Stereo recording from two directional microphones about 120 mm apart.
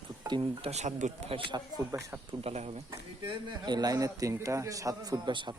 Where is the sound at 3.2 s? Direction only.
35° right (ahead or behind).